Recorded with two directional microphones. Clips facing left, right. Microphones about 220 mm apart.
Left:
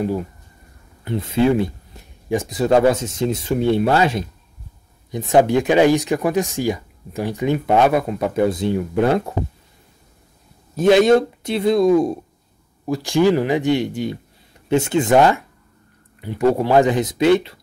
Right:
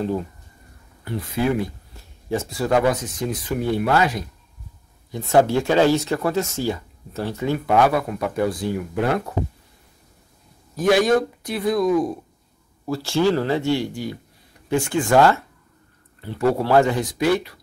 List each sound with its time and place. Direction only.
1.0 s speech: 25° left (ahead or behind)
2.2 s speech: 15° left (ahead or behind)
10.8 s speech: 25° left (ahead or behind)
12.8 s speech: 15° left (ahead or behind)